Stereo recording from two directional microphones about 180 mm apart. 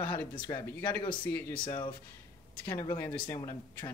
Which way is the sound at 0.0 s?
25° left (ahead or behind).